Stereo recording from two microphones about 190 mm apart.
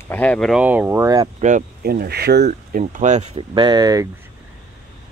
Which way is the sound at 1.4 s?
45° right (ahead or behind).